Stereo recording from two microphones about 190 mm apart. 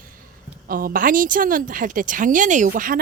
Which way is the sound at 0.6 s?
50° right (ahead or behind).